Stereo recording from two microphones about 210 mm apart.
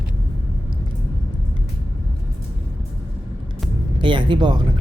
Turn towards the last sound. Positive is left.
turn(degrees=-20)  # may be behind; listen again after turning